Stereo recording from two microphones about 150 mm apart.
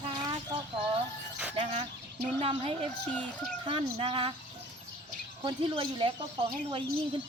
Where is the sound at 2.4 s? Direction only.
40° right (ahead or behind).